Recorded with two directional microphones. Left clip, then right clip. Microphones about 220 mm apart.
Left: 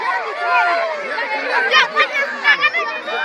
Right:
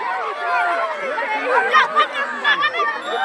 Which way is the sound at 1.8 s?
45° left (ahead or behind).